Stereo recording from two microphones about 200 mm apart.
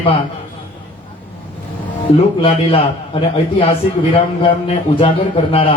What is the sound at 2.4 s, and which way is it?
A man's voice, 25° left (ahead or behind).